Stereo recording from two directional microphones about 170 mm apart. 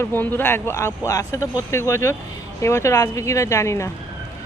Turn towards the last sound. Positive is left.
turn(degrees=15)  # may be behind; listen again after turning